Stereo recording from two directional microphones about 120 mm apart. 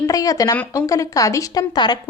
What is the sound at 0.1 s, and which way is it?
Speech, 30° left (ahead or behind).